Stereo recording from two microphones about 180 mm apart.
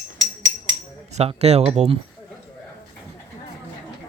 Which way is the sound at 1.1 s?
35° right (ahead or behind).